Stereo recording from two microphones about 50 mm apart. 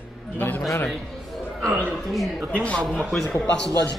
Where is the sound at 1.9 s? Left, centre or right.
Centre.